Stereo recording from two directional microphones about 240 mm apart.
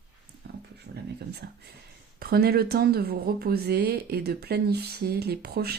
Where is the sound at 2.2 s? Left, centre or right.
Right.